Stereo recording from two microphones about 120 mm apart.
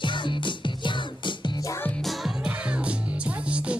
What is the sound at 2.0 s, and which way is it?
Music, 5° right (ahead or behind).